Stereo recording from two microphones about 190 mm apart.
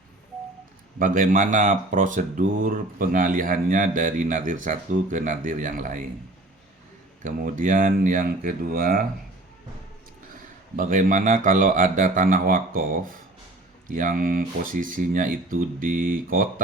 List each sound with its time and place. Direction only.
0.9 s speech: 45° right (ahead or behind)
7.2 s speech: 45° right (ahead or behind)
10.8 s speech: 45° right (ahead or behind)